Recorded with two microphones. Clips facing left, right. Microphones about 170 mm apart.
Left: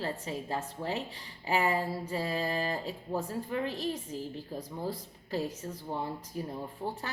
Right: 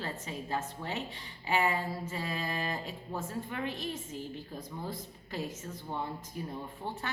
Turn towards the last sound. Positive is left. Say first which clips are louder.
# left 2 dB
turn(degrees=35)  # may be behind; listen again after turning